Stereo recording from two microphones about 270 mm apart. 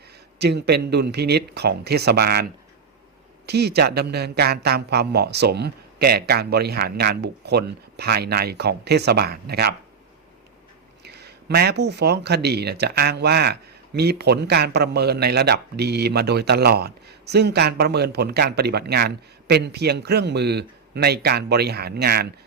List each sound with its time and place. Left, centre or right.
0.3 s speech: right
11.0 s speech: right